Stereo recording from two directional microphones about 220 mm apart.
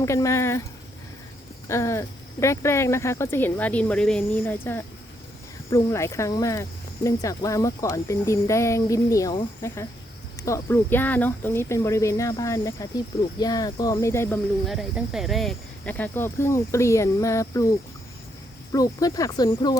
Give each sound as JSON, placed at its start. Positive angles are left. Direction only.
{"t": 0.0, "sound": "speech", "side_deg": 15}
{"t": 1.6, "sound": "speech", "side_deg": 15}
{"t": 14.7, "sound": "speech", "side_deg": 0}
{"t": 18.7, "sound": "speech", "side_deg": 15}